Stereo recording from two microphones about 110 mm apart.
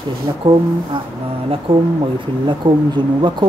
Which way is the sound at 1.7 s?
55° right (ahead or behind).